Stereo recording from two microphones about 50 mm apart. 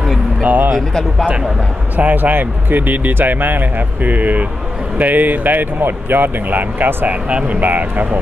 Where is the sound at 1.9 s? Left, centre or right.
Right.